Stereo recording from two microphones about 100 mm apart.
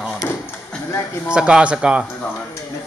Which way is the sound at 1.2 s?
10° right (ahead or behind).